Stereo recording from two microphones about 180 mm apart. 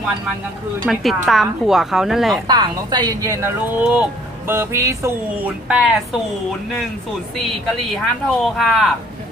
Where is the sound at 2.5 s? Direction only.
25° right (ahead or behind); by 6.2 s 5° right (ahead or behind).